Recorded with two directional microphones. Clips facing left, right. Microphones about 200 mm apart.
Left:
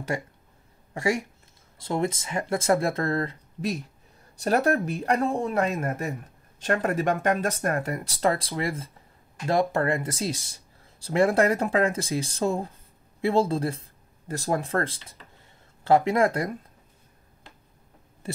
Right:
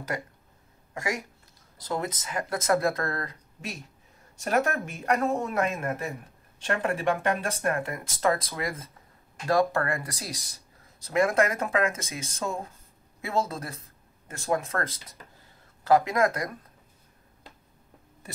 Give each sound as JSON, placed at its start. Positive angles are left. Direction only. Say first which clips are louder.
{"t": 0.9, "sound": "speech", "louder": "left 6 dB", "side_deg": 30}